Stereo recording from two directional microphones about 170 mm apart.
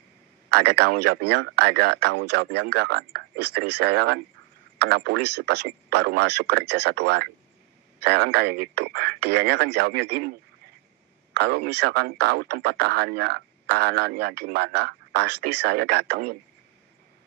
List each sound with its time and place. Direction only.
0.5 s speech: 70° right (ahead or behind)
11.3 s speech: 70° right (ahead or behind)